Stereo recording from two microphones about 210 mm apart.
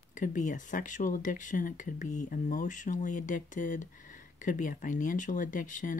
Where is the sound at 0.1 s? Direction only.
35° left (ahead or behind).